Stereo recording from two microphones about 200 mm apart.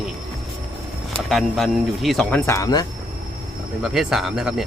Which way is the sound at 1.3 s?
Centre (ahead or behind).